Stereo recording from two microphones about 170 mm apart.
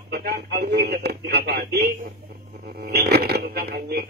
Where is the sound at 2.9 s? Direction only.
70° right (ahead or behind).